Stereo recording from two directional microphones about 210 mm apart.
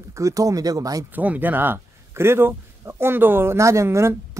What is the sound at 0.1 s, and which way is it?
Speech, 15° right (ahead or behind).